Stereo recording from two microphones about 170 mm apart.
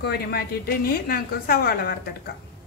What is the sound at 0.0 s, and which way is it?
A woman's voice, 70° left (ahead or behind).